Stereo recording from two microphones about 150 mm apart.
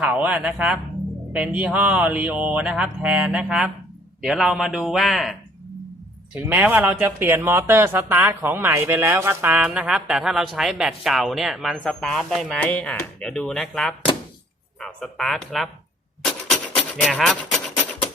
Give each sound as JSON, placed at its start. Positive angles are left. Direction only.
{"t": 0.0, "sound": "speech", "side_deg": -10}
{"t": 9.6, "sound": "speech", "side_deg": -5}
{"t": 16.5, "sound": "music", "side_deg": 0}